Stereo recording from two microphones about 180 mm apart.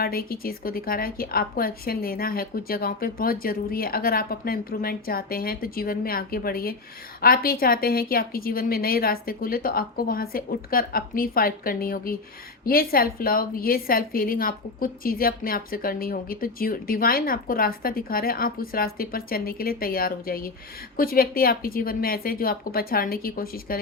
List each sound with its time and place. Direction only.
0.0 s a woman's voice: 55° left (ahead or behind)